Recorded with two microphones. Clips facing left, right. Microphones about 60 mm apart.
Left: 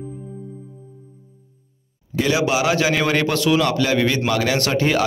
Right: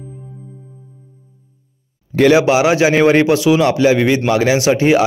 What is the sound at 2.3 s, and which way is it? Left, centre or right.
A man's voice, right.